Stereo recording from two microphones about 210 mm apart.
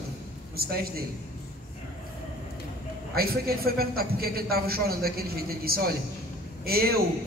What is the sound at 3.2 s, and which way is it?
A man's voice, 45° right (ahead or behind).